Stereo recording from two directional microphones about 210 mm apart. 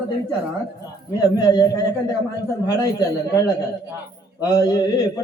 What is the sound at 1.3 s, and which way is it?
Speech, 15° left (ahead or behind).